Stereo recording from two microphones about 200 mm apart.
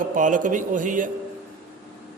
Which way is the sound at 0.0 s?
40° right (ahead or behind).